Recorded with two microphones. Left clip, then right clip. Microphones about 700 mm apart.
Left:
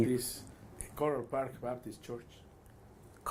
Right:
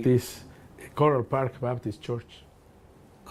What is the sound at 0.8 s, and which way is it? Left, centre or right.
Speech, right.